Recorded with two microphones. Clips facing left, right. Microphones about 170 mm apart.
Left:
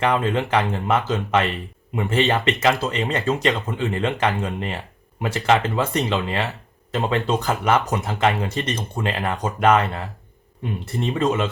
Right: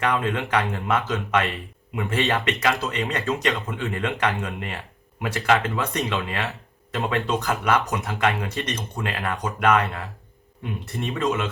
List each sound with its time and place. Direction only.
0.0 s speech: 25° left (ahead or behind)
11.0 s speech: 30° left (ahead or behind)